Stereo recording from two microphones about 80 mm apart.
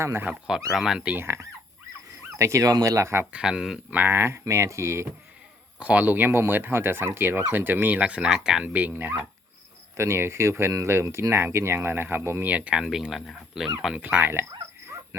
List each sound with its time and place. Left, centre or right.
0.0 s speech: right
0.4 s speech: centre
1.0 s speech: right
3.3 s speech: centre
3.9 s speech: right
5.8 s speech: centre
8.6 s speech: centre
12.5 s speech: centre
14.0 s speech: right